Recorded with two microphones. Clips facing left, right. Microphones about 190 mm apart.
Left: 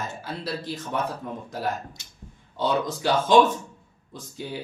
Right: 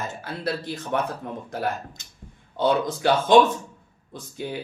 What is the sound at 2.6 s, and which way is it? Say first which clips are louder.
Speech: right 3 dB; 55° right (ahead or behind).